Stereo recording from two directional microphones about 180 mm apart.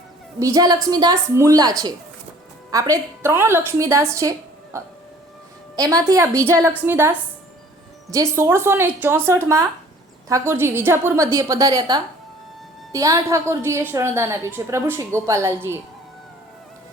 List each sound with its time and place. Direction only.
0.3 s a woman's voice: 20° right (ahead or behind)